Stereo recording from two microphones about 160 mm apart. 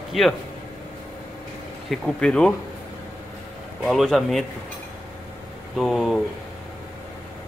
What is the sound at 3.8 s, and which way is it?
Speech, centre (ahead or behind).